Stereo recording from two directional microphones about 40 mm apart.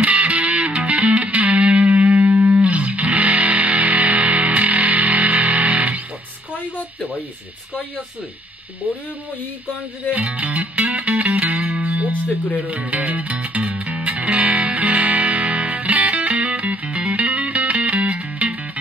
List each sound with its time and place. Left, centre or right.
0.0 s music: right
10.1 s music: right